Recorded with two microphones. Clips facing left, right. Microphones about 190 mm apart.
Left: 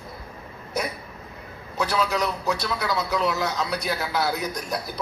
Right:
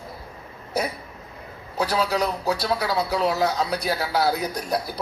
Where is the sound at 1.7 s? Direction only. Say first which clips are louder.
Right 1 dB; 35° right (ahead or behind).